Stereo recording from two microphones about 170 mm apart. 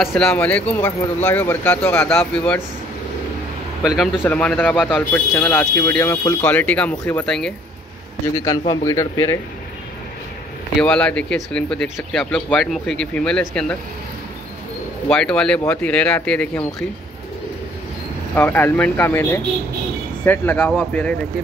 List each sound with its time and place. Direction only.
0.0 s speech: centre (ahead or behind)
3.8 s speech: centre (ahead or behind)
4.2 s speech: 10° left (ahead or behind)
8.4 s speech: 20° left (ahead or behind)
10.8 s speech: 5° left (ahead or behind)
15.0 s speech: 5° left (ahead or behind)
18.3 s speech: 10° left (ahead or behind)